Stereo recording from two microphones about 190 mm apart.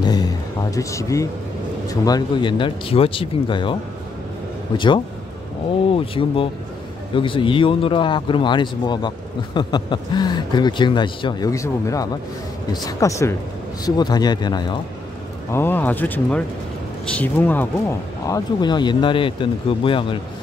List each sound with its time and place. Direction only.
0.0 s a sound: 20° left (ahead or behind)
1.9 s speech: 20° left (ahead or behind)
4.7 s speech: 25° left (ahead or behind)
15.5 s speech: 10° left (ahead or behind); by 20.2 s 25° left (ahead or behind)